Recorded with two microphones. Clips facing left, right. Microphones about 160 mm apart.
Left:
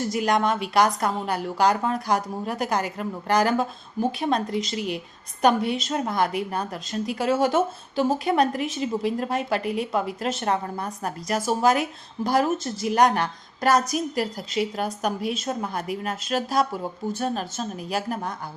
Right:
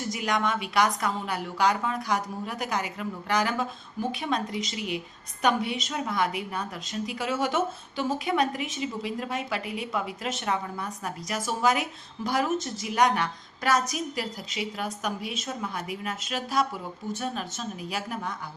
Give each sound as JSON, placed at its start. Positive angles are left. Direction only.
{"t": 0.2, "sound": "a woman's voice", "side_deg": 35}